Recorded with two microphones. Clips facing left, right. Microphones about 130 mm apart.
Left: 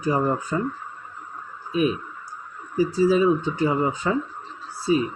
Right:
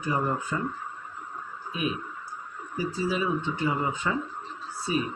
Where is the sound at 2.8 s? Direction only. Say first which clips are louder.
Left 10 dB; 35° left (ahead or behind).